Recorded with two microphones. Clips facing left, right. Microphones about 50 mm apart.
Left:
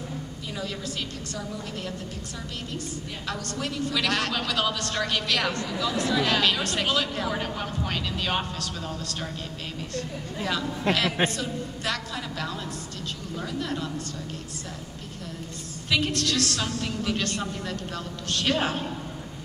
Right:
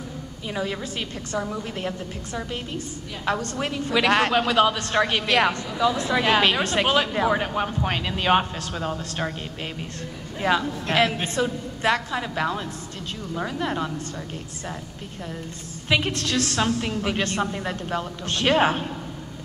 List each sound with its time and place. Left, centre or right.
0.6 s a woman's voice: right
15.9 s a woman's voice: right